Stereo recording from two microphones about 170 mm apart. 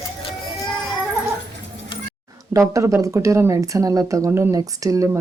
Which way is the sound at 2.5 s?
20° right (ahead or behind).